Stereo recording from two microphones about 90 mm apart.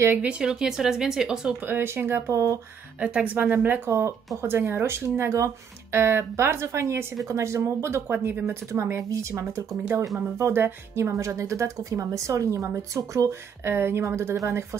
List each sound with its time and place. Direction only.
0.2 s speech: 10° right (ahead or behind)
1.7 s speech: 25° right (ahead or behind)
3.0 s speech: 10° right (ahead or behind); by 14.8 s 35° right (ahead or behind)